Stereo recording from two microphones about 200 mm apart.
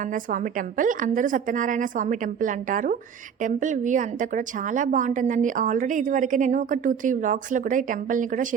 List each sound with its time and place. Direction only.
0.0 s a woman's voice: 40° right (ahead or behind)